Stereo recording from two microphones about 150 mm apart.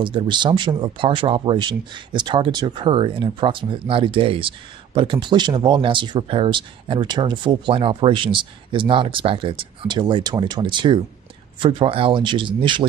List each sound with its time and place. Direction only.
0.0 s speech: 30° right (ahead or behind)